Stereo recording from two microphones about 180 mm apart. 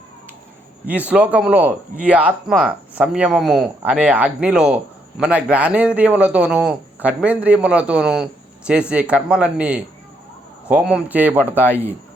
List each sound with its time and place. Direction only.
0.9 s a man's voice: 10° right (ahead or behind)